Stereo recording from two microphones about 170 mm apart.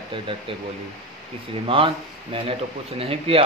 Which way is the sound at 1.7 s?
30° right (ahead or behind).